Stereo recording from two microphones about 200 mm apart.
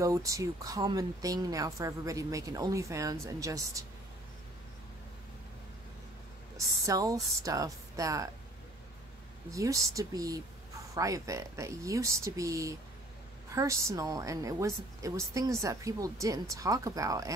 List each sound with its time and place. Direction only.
0.0 s speech: 15° right (ahead or behind)
6.9 s speech: 15° right (ahead or behind)
9.5 s speech: 15° right (ahead or behind)